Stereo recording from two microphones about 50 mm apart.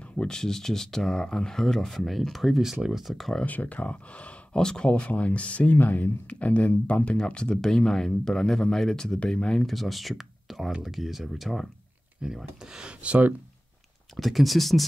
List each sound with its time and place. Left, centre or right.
0.2 s speech: centre
3.4 s speech: left
4.6 s speech: centre; by 7.1 s left
7.1 s speech: centre
9.7 s speech: centre
12.2 s speech: centre
14.1 s speech: centre